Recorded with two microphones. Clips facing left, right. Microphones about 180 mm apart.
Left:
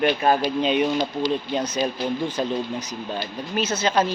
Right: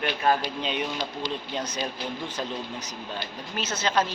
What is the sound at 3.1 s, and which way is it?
Speech, 10° left (ahead or behind).